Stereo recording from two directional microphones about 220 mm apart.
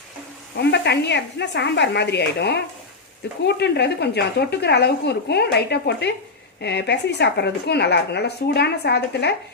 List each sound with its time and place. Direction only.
0.5 s a woman's voice: 50° left (ahead or behind)